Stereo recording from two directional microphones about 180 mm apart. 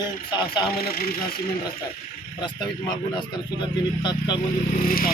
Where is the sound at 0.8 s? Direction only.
55° left (ahead or behind).